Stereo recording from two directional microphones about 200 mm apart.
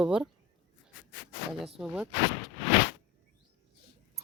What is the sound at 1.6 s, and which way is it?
Speech, 5° right (ahead or behind).